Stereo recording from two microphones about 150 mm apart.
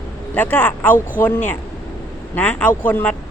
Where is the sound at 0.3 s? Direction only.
10° left (ahead or behind).